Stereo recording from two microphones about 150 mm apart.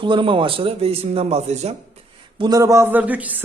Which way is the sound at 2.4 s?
25° right (ahead or behind).